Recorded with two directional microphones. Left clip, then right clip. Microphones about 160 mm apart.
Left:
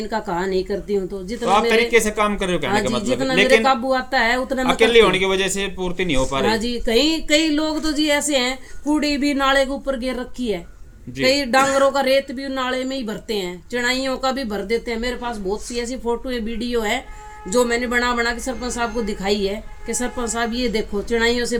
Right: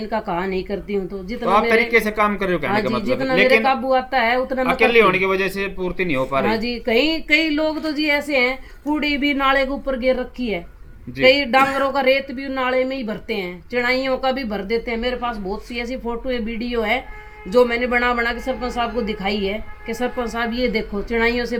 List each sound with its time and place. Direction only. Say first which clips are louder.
0.0 s speech: even; 15° right (ahead or behind)
1.5 s speech: even; 35° left (ahead or behind)
2.6 s speech: left 1 dB; 15° right (ahead or behind)
4.6 s speech: left 1 dB; 40° left (ahead or behind)
6.8 s speech: even; 15° right (ahead or behind)